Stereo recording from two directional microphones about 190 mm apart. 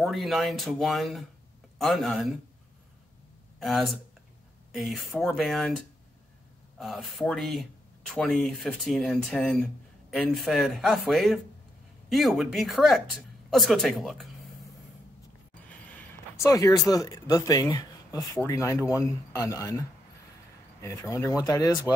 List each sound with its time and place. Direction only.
0.0 s speech: centre (ahead or behind)
3.5 s speech: centre (ahead or behind)
6.8 s speech: centre (ahead or behind)
15.7 s speech: 5° left (ahead or behind)